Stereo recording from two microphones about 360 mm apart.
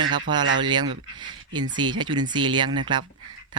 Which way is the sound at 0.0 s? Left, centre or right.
Right.